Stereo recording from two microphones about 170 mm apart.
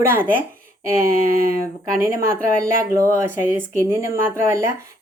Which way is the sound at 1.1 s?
60° right (ahead or behind).